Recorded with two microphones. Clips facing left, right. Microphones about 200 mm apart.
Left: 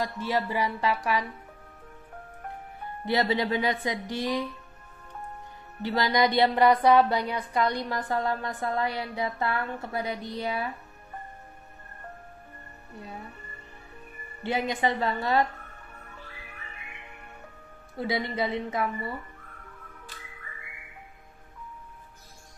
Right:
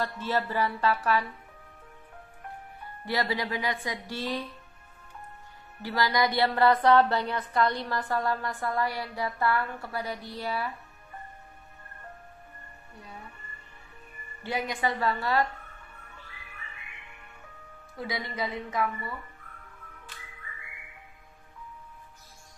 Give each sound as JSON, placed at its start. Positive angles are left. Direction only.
{"t": 0.0, "sound": "speech", "side_deg": 15}
{"t": 3.1, "sound": "a woman's voice", "side_deg": 20}
{"t": 5.8, "sound": "a woman's voice", "side_deg": 20}
{"t": 14.4, "sound": "a woman's voice", "side_deg": 25}
{"t": 17.9, "sound": "a woman's voice", "side_deg": 25}